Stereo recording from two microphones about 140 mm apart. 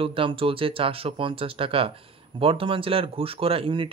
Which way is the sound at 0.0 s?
40° right (ahead or behind).